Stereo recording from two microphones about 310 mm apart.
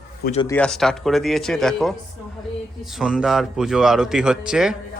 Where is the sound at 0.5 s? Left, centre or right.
Centre.